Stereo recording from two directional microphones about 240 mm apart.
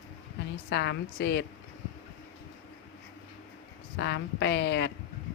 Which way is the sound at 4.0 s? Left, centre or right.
Left.